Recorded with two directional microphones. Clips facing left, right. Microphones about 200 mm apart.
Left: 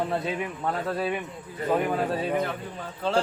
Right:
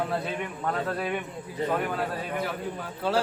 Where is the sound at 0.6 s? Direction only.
Centre (ahead or behind).